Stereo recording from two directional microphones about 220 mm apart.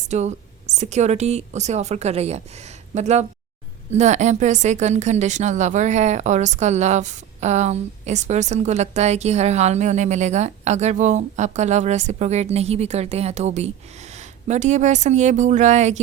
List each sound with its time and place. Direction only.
0.1 s a woman's voice: 30° right (ahead or behind)